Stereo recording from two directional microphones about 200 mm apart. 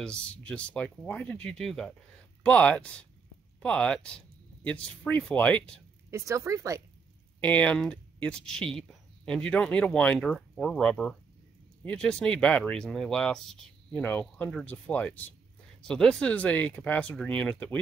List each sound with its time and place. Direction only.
0.0 s speech: 5° left (ahead or behind)
6.0 s speech: 15° right (ahead or behind)
7.3 s speech: 5° left (ahead or behind)